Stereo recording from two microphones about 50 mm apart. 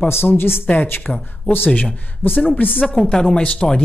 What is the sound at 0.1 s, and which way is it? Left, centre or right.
Speech, left.